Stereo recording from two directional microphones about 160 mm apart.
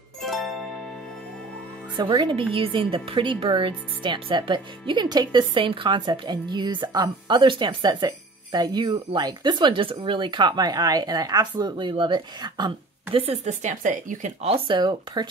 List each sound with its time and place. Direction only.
0.2 s music: centre (ahead or behind)
2.0 s a woman's voice: 30° right (ahead or behind)
13.2 s speech: 45° right (ahead or behind)
14.4 s a woman's voice: 35° right (ahead or behind)